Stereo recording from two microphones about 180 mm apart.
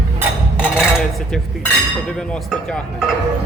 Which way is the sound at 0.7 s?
5° left (ahead or behind).